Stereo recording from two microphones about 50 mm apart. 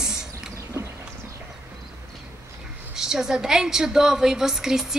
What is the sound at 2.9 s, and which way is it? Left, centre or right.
A woman's voice, centre.